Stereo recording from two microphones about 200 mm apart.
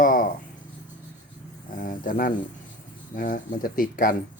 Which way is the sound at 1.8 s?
45° left (ahead or behind).